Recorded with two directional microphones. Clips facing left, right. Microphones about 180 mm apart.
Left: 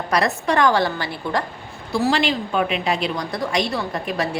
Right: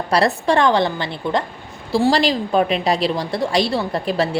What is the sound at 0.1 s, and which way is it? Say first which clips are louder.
A woman's voice: right 3 dB; 30° right (ahead or behind).